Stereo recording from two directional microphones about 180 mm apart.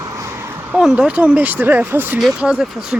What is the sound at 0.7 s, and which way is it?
Speech, 5° right (ahead or behind).